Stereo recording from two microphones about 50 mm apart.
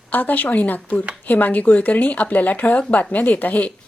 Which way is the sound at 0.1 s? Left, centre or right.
Left.